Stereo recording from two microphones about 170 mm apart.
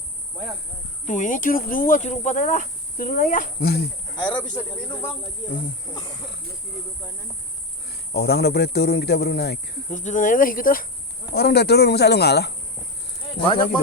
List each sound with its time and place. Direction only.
1.0 s speech: 50° left (ahead or behind)
4.3 s speech: 25° left (ahead or behind)
8.1 s speech: 70° left (ahead or behind)
9.9 s speech: 45° left (ahead or behind)
11.3 s speech: 70° left (ahead or behind)
13.4 s speech: 30° left (ahead or behind)